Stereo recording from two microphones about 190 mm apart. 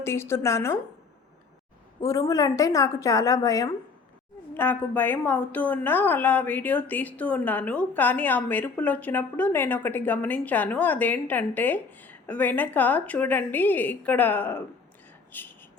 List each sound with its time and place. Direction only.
0.0 s a woman's voice: 15° left (ahead or behind)
2.0 s a woman's voice: 15° left (ahead or behind)